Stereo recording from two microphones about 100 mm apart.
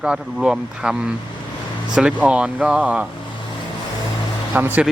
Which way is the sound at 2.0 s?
10° right (ahead or behind).